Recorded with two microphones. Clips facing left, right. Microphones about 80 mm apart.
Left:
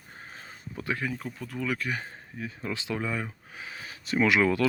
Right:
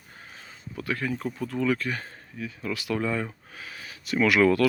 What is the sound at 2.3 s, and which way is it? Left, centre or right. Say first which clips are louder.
Speech: right 2 dB; left.